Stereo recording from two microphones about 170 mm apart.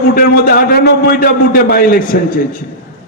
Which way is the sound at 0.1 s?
60° left (ahead or behind).